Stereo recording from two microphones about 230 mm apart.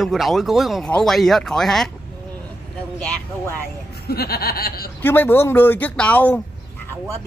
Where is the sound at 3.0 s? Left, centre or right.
Centre.